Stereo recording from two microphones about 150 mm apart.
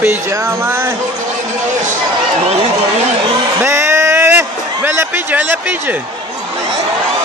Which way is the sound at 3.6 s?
20° right (ahead or behind).